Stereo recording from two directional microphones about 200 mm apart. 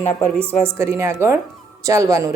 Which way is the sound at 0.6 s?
15° right (ahead or behind).